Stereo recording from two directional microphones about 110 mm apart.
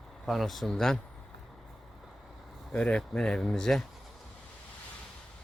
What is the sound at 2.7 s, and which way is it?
Speech, 5° left (ahead or behind).